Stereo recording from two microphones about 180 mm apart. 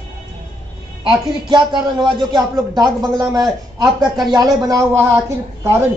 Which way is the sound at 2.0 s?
25° right (ahead or behind).